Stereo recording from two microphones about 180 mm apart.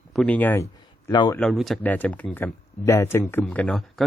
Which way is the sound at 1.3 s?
5° left (ahead or behind).